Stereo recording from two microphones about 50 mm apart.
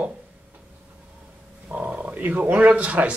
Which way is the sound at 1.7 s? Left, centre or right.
Right.